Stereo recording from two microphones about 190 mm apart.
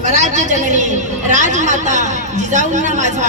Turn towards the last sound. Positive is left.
turn(degrees=-40)  # may be behind; listen again after turning